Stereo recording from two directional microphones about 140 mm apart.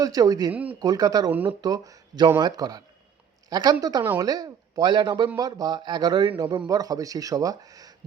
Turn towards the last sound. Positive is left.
turn(degrees=-25)  # may be behind; listen again after turning